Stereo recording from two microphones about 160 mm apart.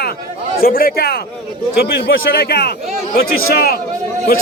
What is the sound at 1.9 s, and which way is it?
A man's voice, 80° left.